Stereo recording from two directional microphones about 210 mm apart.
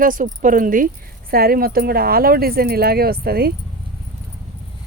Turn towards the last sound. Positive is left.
turn(degrees=-45)  # may be behind; listen again after turning